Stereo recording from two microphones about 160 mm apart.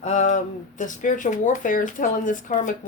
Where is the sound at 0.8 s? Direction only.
55° left (ahead or behind).